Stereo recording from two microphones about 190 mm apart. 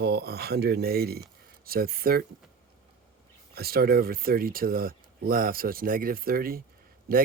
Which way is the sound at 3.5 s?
55° right (ahead or behind).